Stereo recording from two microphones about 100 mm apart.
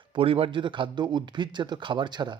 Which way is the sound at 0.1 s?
65° right (ahead or behind).